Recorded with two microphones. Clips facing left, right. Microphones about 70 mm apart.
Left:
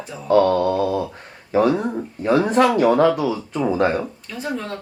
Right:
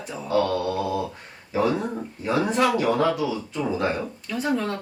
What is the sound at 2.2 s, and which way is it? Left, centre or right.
Speech, left.